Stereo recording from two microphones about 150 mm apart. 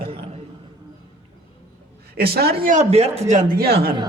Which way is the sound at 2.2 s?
90° right.